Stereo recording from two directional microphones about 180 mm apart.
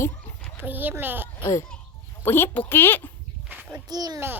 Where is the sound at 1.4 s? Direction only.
15° left (ahead or behind).